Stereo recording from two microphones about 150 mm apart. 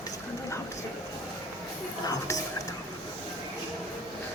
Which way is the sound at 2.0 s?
25° left (ahead or behind).